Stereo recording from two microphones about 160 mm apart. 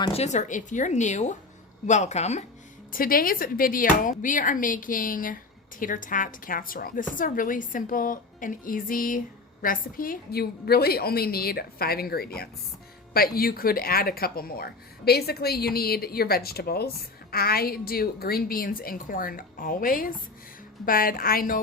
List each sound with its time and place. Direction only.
0.1 s speech: 45° left (ahead or behind)
2.9 s a woman's voice: 65° left (ahead or behind)